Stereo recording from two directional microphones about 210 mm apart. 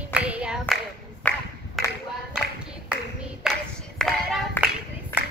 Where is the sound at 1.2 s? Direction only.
10° left (ahead or behind).